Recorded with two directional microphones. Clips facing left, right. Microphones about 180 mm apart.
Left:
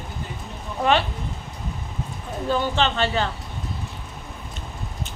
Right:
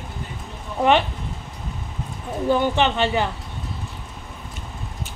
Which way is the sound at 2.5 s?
15° right (ahead or behind).